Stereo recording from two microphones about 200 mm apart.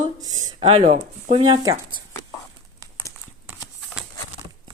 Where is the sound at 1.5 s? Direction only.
20° right (ahead or behind).